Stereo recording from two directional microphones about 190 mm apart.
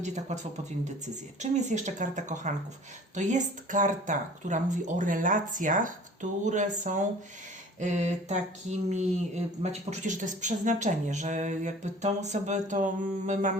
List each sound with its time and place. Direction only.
0.0 s speech: 40° right (ahead or behind)